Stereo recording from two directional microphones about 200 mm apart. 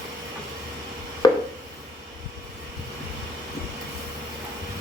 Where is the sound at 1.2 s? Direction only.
20° left (ahead or behind).